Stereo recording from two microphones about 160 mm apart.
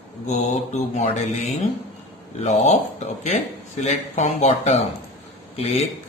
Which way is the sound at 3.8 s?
45° left (ahead or behind).